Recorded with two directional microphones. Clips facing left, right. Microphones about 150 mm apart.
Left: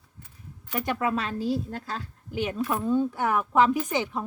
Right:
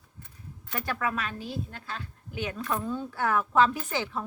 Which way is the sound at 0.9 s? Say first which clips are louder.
Left 4 dB; 25° left (ahead or behind).